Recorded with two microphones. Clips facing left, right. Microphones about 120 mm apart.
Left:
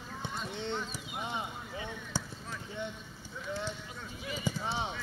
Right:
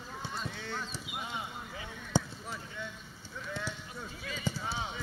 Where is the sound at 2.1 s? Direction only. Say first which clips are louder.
Right 8 dB; 15° right (ahead or behind).